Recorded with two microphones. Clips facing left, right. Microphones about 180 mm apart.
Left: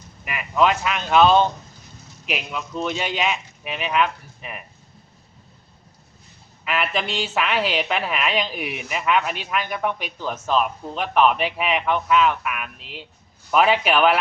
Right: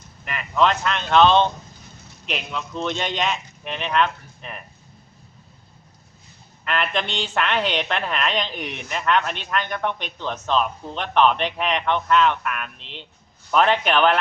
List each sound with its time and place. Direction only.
0.3 s a woman's voice: 5° left (ahead or behind)
6.7 s a woman's voice: 5° left (ahead or behind)